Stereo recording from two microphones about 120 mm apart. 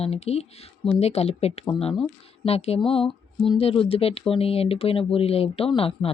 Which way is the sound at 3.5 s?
55° left (ahead or behind).